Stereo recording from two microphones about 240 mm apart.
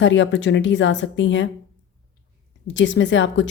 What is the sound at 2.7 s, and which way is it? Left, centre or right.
Speech, left.